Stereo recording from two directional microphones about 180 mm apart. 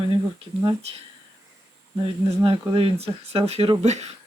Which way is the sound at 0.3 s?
35° right (ahead or behind).